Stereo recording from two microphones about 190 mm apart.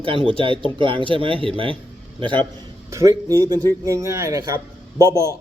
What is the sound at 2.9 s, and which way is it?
A man's voice, 15° right (ahead or behind).